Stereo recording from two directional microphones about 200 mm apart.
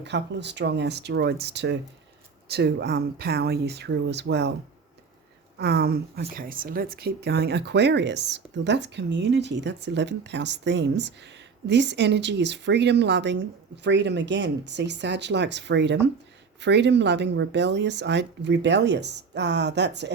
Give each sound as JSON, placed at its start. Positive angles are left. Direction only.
{"t": 0.0, "sound": "speech", "side_deg": -60}
{"t": 5.5, "sound": "speech", "side_deg": -55}